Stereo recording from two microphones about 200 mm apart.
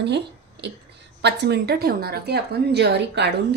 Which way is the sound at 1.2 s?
55° right (ahead or behind).